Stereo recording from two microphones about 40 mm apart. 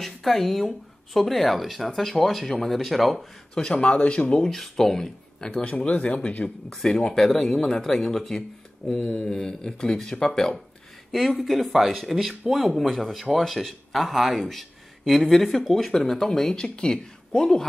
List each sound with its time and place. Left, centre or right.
0.0 s speech: centre
3.7 s speech: left
4.4 s speech: centre
5.4 s speech: left
6.7 s speech: centre
7.2 s speech: centre
8.9 s speech: centre
11.1 s speech: centre